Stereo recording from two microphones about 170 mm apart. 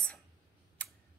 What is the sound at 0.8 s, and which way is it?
Scissors, 10° left (ahead or behind).